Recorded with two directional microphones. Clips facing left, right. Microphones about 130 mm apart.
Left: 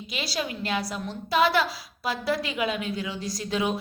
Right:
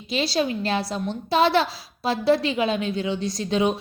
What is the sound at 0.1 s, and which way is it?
A woman's voice, 30° right (ahead or behind).